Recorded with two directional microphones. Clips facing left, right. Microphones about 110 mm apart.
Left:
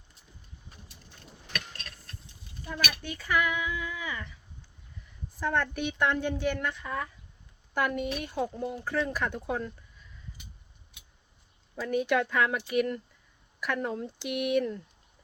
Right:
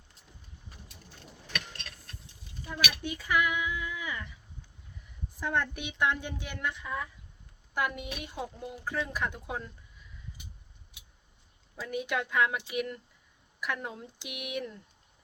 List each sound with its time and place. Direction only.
1.5 s a sound: 40° left (ahead or behind)
3.0 s a woman's voice: 10° right (ahead or behind)
8.5 s speech: 50° left (ahead or behind)
8.8 s speech: 15° right (ahead or behind)
11.8 s speech: 5° right (ahead or behind)